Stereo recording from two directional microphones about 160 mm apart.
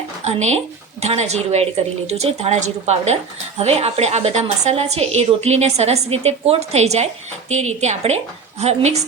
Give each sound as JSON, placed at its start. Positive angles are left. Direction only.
{"t": 0.3, "sound": "a woman's voice", "side_deg": -45}